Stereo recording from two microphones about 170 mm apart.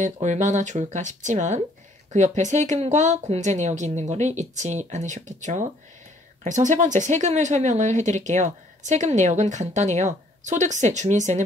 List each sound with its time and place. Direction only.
0.0 s a woman's voice: 45° right (ahead or behind)